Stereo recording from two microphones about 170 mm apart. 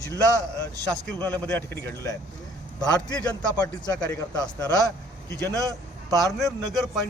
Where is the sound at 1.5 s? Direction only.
15° left (ahead or behind).